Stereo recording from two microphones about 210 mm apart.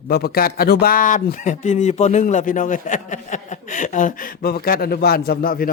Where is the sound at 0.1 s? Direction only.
45° left (ahead or behind).